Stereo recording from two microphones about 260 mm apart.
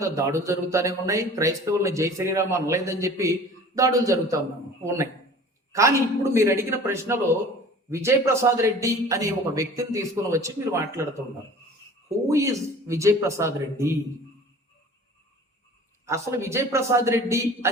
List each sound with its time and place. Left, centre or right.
0.0 s speech: centre
5.7 s speech: centre
12.0 s speech: centre
16.0 s speech: centre